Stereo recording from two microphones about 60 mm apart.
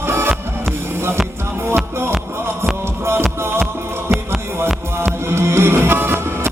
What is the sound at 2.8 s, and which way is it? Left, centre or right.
Music, right.